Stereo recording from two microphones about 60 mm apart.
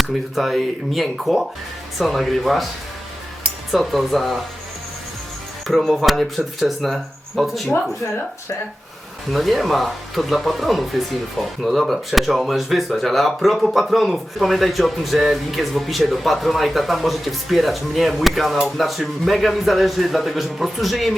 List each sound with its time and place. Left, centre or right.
0.0 s speech: centre
3.7 s speech: centre
5.6 s speech: centre
9.3 s speech: centre